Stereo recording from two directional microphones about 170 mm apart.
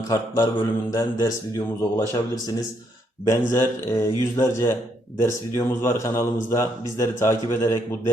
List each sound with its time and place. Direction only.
0.1 s mantra: 20° left (ahead or behind)
4.4 s speech: 15° left (ahead or behind)